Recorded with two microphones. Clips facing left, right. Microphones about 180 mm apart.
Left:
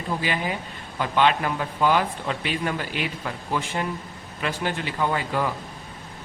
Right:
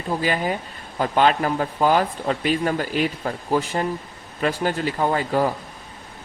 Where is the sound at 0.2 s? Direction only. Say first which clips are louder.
Right 4 dB; 40° right (ahead or behind).